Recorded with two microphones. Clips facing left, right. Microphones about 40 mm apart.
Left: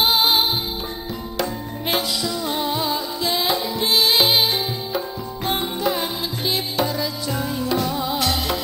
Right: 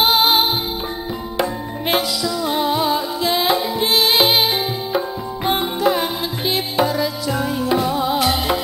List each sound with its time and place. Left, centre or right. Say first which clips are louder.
0.0 s music: right 3 dB; centre
1.4 s tabla: right 4 dB; centre
2.4 s music: right 7 dB; centre
4.9 s music: right 5 dB; centre